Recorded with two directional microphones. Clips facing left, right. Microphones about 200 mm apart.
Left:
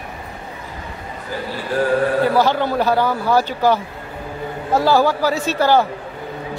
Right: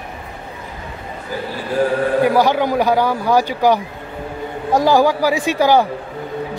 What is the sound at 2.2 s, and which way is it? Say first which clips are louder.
Speech: right 2 dB; 15° right (ahead or behind).